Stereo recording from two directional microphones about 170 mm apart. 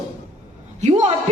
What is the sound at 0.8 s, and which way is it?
Speech, 40° right (ahead or behind).